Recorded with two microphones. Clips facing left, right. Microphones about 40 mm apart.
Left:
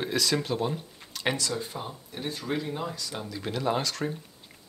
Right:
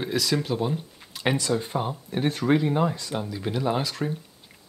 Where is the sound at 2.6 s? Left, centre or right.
Right.